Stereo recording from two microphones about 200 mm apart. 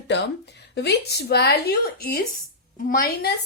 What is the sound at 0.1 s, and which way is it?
Speech, 60° left (ahead or behind).